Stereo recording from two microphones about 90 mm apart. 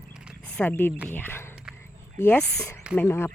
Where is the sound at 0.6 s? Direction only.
25° left (ahead or behind).